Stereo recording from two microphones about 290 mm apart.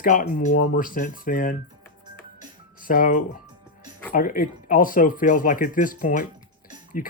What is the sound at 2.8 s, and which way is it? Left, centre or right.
Speech, left.